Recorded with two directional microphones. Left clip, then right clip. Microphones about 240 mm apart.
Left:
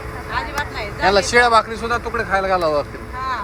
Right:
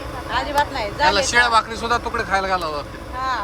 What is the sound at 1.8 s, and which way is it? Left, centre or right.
Speech, centre.